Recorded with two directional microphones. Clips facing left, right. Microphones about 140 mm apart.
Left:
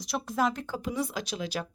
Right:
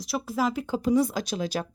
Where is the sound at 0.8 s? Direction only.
40° right (ahead or behind).